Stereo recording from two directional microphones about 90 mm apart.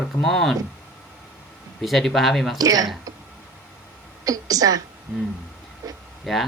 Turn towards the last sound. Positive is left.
turn(degrees=0)  # may be behind; listen again after turning